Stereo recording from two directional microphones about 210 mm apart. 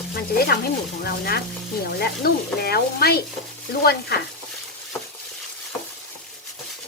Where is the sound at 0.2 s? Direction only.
45° left (ahead or behind).